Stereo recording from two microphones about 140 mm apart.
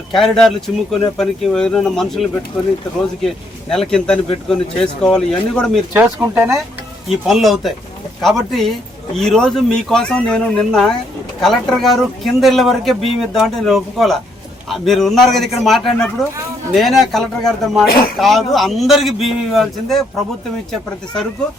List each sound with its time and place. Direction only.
0.1 s speech: centre (ahead or behind)
3.2 s speech: 5° left (ahead or behind)
5.9 s speech: 15° right (ahead or behind)
7.3 s speech: centre (ahead or behind)